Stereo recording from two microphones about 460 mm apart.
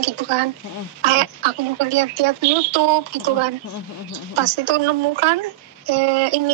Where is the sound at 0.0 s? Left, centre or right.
Right.